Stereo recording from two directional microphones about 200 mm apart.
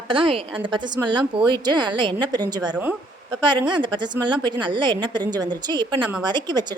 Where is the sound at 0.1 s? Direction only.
25° right (ahead or behind).